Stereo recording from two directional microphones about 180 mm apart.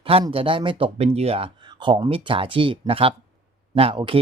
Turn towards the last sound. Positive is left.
turn(degrees=-30)  # may be behind; listen again after turning